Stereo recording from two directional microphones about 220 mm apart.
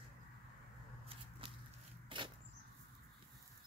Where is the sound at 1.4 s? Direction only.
25° right (ahead or behind).